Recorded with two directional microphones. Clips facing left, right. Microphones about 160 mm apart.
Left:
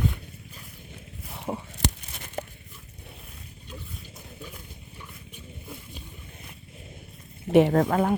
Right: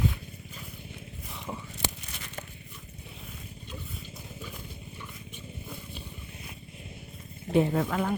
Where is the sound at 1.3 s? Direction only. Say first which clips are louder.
Left 6 dB; 50° left (ahead or behind).